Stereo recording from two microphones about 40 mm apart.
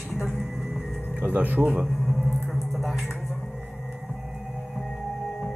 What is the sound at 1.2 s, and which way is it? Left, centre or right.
Speech, right.